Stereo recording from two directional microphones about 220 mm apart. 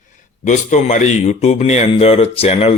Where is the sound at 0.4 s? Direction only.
35° left (ahead or behind).